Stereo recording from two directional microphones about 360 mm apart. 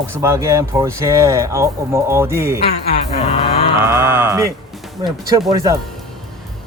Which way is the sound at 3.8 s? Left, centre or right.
Centre.